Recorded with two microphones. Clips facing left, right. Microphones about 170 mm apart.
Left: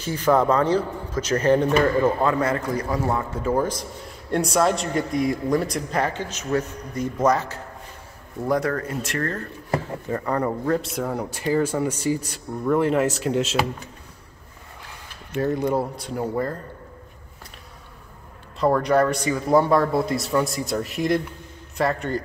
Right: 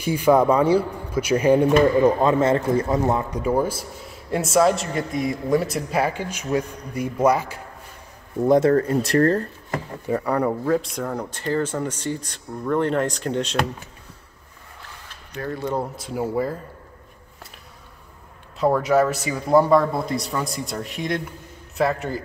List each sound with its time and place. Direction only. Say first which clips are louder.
0.0 s a man's voice: right 3 dB; 10° right (ahead or behind)
8.5 s speech: right 7 dB; 25° right (ahead or behind)
10.0 s speech: right 6 dB; 10° right (ahead or behind)
15.3 s speech: left 6 dB; 25° left (ahead or behind)
15.6 s speech: left 3 dB; 5° left (ahead or behind)
18.6 s speech: right 1 dB; 5° right (ahead or behind)